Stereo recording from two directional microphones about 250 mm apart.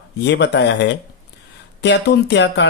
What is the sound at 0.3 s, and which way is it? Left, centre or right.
Speech, left.